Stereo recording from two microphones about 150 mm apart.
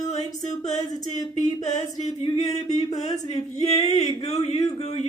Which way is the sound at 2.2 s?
35° left (ahead or behind).